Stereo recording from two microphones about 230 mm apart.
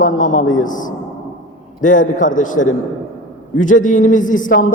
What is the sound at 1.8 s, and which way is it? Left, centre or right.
Speech, left.